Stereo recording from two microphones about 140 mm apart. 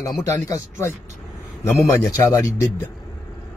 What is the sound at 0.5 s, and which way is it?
Speech, 20° left (ahead or behind).